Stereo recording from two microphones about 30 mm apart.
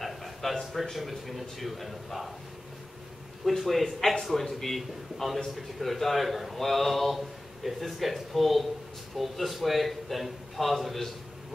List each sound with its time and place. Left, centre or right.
0.0 s a sound: centre
0.9 s a man's voice: centre
3.4 s a man's voice: centre